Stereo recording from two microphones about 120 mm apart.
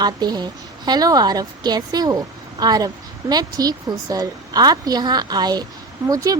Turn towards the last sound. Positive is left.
turn(degrees=-30)  # may be behind; listen again after turning